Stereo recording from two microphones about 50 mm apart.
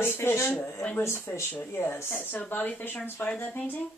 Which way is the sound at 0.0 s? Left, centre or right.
Left.